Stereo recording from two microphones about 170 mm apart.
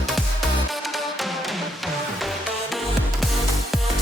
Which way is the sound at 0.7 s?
Centre (ahead or behind).